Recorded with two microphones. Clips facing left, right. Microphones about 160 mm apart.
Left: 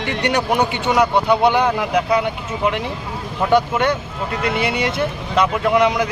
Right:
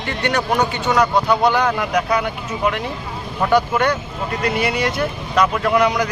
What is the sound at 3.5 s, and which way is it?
Speech, 20° left (ahead or behind).